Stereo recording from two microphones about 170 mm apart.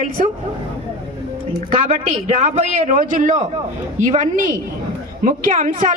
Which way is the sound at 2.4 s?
45° right (ahead or behind).